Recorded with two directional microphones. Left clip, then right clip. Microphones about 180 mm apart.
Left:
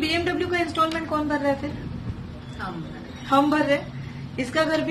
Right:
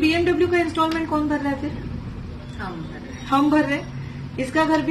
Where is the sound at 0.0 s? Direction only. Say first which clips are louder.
Right 5 dB; 30° left (ahead or behind).